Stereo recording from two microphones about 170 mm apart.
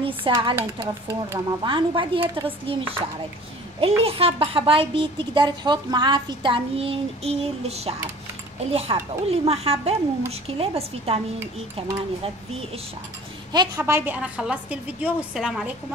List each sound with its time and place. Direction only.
0.0 s speech: 30° right (ahead or behind)
0.6 s a woman's voice: 15° right (ahead or behind)
1.7 s speech: 30° right (ahead or behind)
13.5 s a woman's voice: 20° right (ahead or behind); by 15.7 s 5° right (ahead or behind)